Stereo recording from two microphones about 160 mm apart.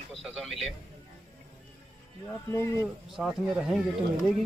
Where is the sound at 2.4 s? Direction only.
15° left (ahead or behind).